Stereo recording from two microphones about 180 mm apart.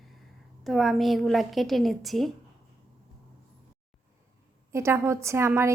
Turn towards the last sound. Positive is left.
turn(degrees=-15)  # may be behind; listen again after turning